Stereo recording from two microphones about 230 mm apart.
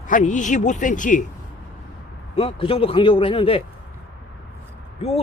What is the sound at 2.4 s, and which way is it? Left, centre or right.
Speech, left.